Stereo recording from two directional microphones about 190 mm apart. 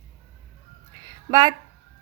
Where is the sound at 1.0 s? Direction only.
20° right (ahead or behind).